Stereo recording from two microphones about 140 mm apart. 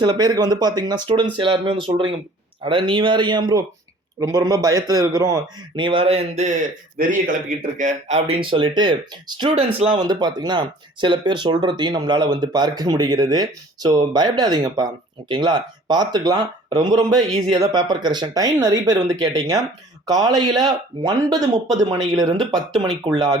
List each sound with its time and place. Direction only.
0.0 s speech: 30° right (ahead or behind)
5.7 s speech: 35° right (ahead or behind)